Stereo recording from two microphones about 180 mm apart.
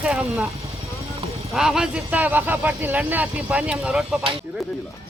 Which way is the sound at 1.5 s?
5° right (ahead or behind).